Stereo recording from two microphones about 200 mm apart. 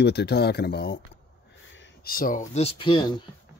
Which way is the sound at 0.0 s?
55° left (ahead or behind).